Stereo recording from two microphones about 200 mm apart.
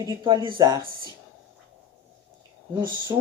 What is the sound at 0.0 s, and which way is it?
Speech, 20° right (ahead or behind).